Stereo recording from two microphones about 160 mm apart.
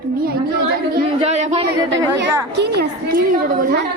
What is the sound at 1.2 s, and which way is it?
Speech, 45° right (ahead or behind).